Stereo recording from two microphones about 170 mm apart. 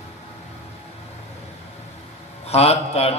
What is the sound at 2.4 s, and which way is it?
Speech, 35° left (ahead or behind).